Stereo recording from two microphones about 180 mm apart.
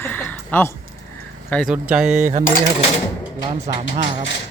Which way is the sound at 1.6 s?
5° right (ahead or behind).